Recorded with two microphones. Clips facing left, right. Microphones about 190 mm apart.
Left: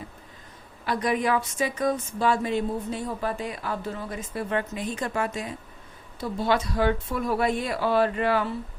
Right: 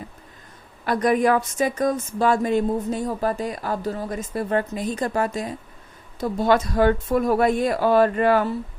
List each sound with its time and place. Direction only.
0.9 s a woman's voice: 45° right (ahead or behind)